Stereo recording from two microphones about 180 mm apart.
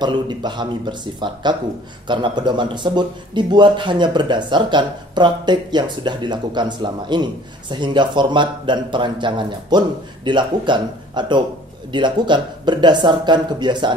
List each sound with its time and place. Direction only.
0.0 s speech: 25° right (ahead or behind)